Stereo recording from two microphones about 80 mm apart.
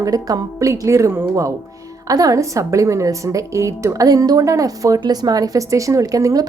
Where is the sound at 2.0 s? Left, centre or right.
Right.